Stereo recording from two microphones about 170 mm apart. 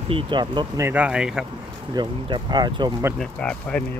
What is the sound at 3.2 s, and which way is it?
Speech, 5° left (ahead or behind).